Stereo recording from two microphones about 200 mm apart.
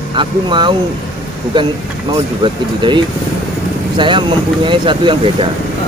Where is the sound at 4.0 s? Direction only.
25° right (ahead or behind).